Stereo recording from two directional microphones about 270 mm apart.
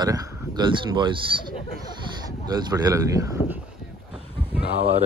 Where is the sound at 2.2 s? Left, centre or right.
Centre.